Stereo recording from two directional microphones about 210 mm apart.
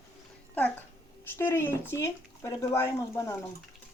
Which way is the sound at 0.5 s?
10° left (ahead or behind).